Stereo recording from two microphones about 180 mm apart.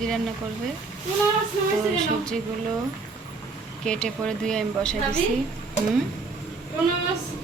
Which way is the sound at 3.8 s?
5° left (ahead or behind).